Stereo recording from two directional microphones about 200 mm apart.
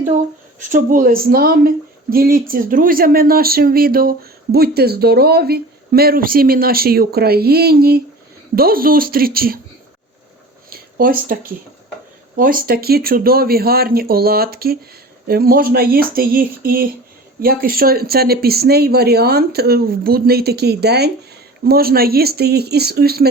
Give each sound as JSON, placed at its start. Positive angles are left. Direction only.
{"t": 0.6, "sound": "speech", "side_deg": -40}
{"t": 10.7, "sound": "speech", "side_deg": -45}